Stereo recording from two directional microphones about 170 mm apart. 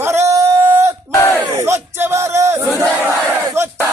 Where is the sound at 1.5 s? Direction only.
15° right (ahead or behind).